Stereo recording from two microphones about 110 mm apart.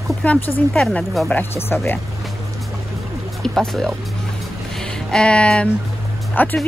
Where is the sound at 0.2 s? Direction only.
10° left (ahead or behind).